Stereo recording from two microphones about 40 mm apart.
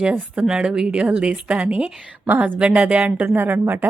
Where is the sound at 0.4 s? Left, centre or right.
Centre.